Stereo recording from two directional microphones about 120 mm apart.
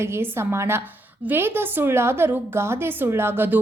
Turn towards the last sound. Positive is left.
turn(degrees=-20)  # may be behind; listen again after turning